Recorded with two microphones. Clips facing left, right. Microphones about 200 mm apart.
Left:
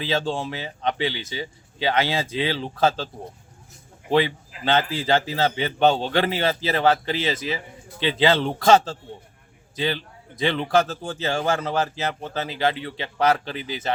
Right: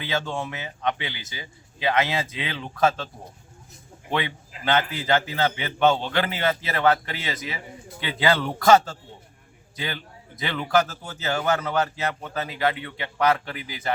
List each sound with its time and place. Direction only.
0.0 s a man's voice: 30° left (ahead or behind)
4.1 s a man's voice: 30° left (ahead or behind)